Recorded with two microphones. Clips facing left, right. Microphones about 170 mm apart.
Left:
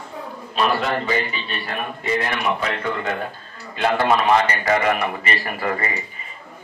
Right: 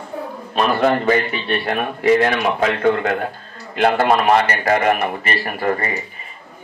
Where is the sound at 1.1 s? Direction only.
70° right (ahead or behind).